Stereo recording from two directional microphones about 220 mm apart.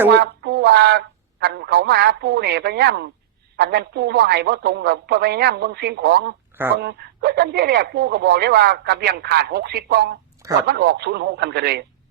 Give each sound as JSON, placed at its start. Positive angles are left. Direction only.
{"t": 0.1, "sound": "speech", "side_deg": -50}